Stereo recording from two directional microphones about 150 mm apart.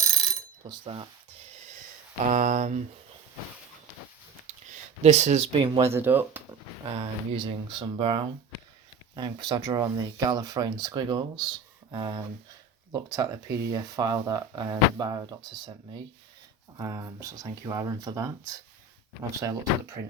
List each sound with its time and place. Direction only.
0.7 s speech: 35° right (ahead or behind)
2.2 s speech: 55° right (ahead or behind)
4.7 s speech: 50° right (ahead or behind)
5.9 s speech: 15° right (ahead or behind)
6.9 s speech: 35° right (ahead or behind)
16.7 s speech: 25° right (ahead or behind)